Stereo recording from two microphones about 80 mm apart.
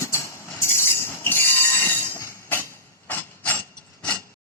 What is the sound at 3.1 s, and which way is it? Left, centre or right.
Mechanisms, left.